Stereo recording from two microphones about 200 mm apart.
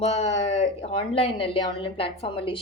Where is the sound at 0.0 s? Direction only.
30° left (ahead or behind).